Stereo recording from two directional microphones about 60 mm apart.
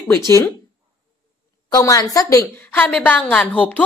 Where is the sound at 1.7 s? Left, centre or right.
Left.